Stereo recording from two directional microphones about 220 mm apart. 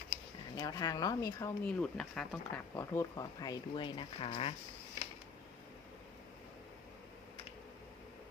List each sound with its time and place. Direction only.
0.6 s speech: 15° left (ahead or behind)